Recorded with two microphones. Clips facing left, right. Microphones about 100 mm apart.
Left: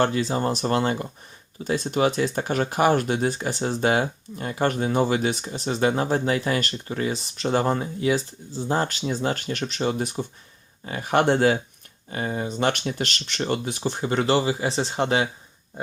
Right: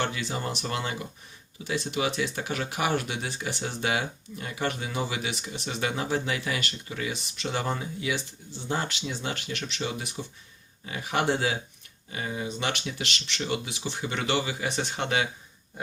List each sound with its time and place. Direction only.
0.0 s speech: 40° left (ahead or behind)